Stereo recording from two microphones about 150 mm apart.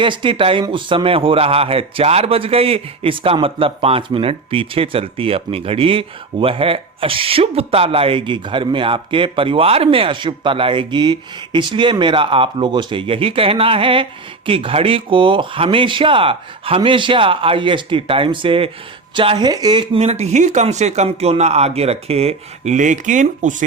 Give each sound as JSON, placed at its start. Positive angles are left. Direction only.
{"t": 0.0, "sound": "a man's voice", "side_deg": -35}
{"t": 20.0, "sound": "speech", "side_deg": -45}